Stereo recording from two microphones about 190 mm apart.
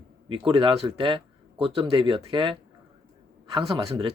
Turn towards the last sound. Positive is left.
turn(degrees=-25)  # may be behind; listen again after turning